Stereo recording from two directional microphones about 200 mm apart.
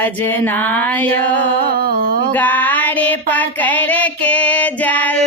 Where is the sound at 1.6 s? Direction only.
50° right (ahead or behind).